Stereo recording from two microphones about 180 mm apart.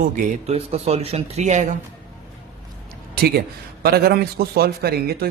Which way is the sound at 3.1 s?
60° right (ahead or behind).